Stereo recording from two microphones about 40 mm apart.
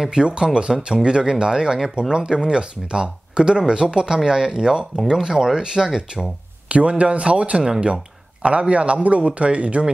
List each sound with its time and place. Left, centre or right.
0.0 s speech: centre
6.7 s speech: right